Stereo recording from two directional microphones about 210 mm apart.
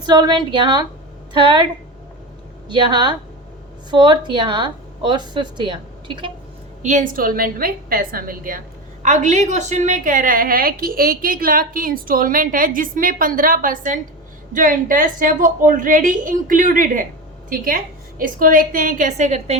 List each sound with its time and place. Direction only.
0.0 s a woman's voice: 20° right (ahead or behind)
2.6 s a woman's voice: 20° right (ahead or behind)
6.8 s a woman's voice: 40° right (ahead or behind)